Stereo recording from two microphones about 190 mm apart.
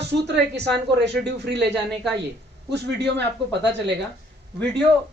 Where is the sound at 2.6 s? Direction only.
65° right (ahead or behind).